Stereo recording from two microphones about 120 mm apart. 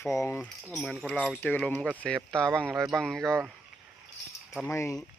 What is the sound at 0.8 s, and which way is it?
Speech, centre (ahead or behind).